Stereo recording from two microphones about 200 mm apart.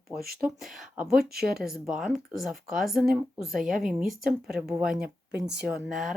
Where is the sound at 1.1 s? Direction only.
50° right (ahead or behind).